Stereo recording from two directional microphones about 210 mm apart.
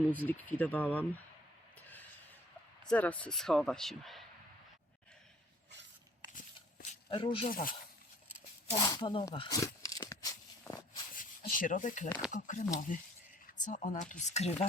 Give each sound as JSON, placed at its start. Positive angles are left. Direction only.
{"t": 0.1, "sound": "speech", "side_deg": 10}
{"t": 2.8, "sound": "speech", "side_deg": 5}
{"t": 7.1, "sound": "speech", "side_deg": 25}
{"t": 7.5, "sound": "speech", "side_deg": 45}
{"t": 8.7, "sound": "tearing", "side_deg": 20}
{"t": 11.1, "sound": "a sound", "side_deg": 40}
{"t": 12.3, "sound": "speech", "side_deg": 35}